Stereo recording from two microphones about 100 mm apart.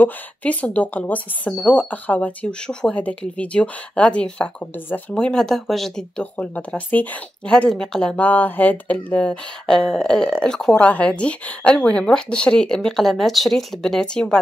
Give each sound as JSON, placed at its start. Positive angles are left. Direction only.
{"t": 0.0, "sound": "speech", "side_deg": 15}
{"t": 8.2, "sound": "speech", "side_deg": 15}